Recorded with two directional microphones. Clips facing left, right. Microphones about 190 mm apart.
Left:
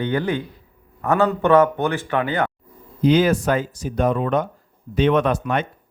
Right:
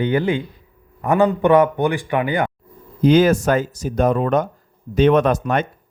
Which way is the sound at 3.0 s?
45° right (ahead or behind).